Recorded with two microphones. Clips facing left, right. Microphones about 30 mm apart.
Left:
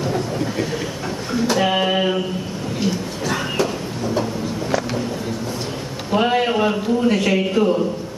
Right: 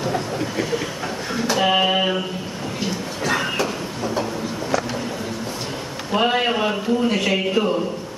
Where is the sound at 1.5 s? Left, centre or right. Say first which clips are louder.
Right 1 dB; centre.